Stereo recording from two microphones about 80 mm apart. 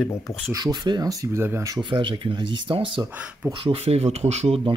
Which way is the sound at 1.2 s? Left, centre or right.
Right.